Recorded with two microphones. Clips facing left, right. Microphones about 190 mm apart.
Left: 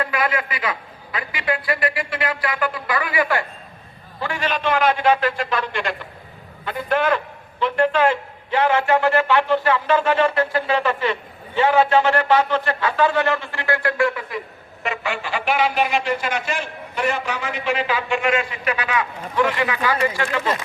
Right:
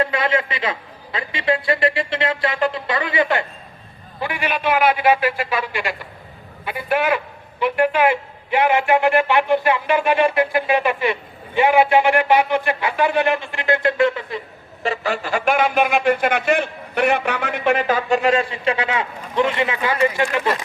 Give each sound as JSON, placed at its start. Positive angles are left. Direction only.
{"t": 0.0, "sound": "a man's voice", "side_deg": -25}
{"t": 4.2, "sound": "a man's voice", "side_deg": -10}
{"t": 14.8, "sound": "a man's voice", "side_deg": -40}